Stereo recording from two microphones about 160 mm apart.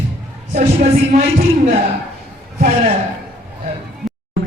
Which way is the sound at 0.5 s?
50° right (ahead or behind).